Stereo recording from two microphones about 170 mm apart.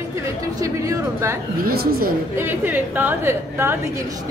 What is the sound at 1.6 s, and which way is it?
Speech, 60° right (ahead or behind).